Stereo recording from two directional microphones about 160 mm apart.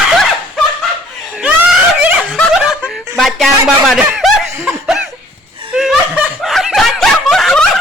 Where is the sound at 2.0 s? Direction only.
5° right (ahead or behind).